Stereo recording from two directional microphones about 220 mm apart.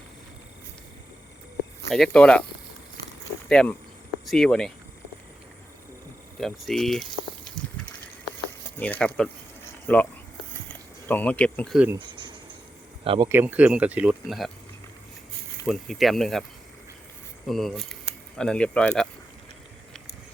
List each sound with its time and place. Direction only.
1.9 s speech: 5° left (ahead or behind)
3.5 s speech: 5° left (ahead or behind)
6.4 s speech: centre (ahead or behind)
7.6 s a sound: 5° left (ahead or behind)
8.8 s speech: 5° left (ahead or behind)
11.1 s speech: 5° left (ahead or behind)
11.9 s cricket: 20° right (ahead or behind)
13.1 s speech: 15° right (ahead or behind); by 14.5 s centre (ahead or behind)
15.6 s speech: centre (ahead or behind)
17.4 s speech: centre (ahead or behind)